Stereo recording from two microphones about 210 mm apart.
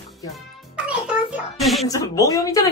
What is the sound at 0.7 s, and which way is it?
Music, 5° right (ahead or behind).